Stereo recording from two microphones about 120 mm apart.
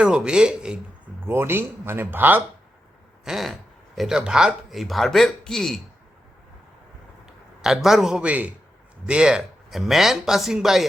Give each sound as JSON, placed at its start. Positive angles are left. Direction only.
{"t": 0.0, "sound": "speech", "side_deg": -5}
{"t": 1.2, "sound": "speech", "side_deg": -20}
{"t": 3.2, "sound": "speech", "side_deg": 0}
{"t": 7.3, "sound": "a man's voice", "side_deg": -5}